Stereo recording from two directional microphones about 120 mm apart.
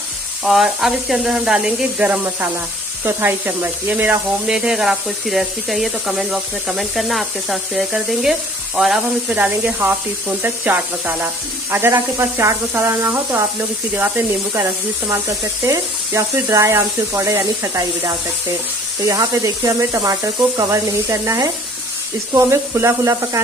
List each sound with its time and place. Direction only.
0.4 s speech: 5° right (ahead or behind); by 23.4 s 25° right (ahead or behind)